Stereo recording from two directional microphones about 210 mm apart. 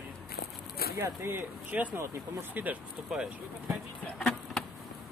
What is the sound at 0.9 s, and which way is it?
Speech, 10° right (ahead or behind).